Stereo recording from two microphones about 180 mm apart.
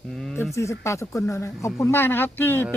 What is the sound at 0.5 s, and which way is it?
Speech, 15° left (ahead or behind).